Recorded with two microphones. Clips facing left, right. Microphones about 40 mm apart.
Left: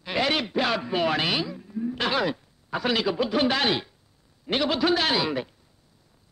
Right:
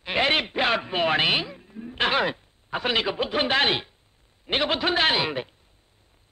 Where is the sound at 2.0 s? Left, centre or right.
Right.